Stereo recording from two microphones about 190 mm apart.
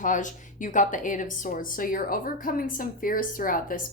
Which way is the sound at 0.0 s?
40° left (ahead or behind).